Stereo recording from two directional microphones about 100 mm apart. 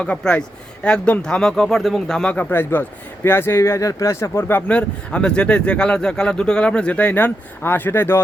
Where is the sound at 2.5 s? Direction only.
20° left (ahead or behind).